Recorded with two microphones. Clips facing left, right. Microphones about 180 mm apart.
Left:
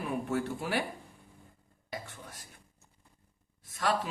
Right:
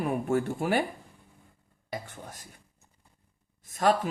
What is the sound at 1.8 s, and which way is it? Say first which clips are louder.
Speech: right 4 dB; 45° right (ahead or behind).